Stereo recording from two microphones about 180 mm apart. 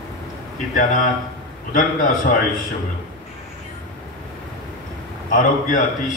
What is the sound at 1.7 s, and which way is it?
Speech, 50° left (ahead or behind).